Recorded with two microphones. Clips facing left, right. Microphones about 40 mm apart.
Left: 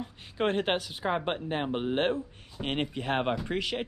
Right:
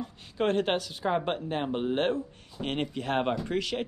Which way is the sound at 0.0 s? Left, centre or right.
Centre.